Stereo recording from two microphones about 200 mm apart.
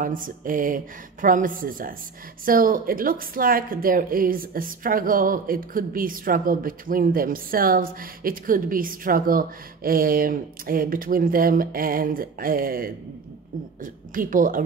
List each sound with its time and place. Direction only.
0.0 s speech: 45° right (ahead or behind)
14.1 s speech: 45° right (ahead or behind)